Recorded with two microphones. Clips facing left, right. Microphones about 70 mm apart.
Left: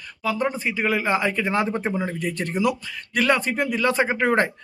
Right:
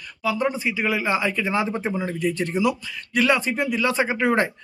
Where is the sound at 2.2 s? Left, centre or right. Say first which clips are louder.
Right 3 dB; left.